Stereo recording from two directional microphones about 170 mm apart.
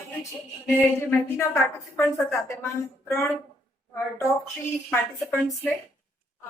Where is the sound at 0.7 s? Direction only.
10° left (ahead or behind).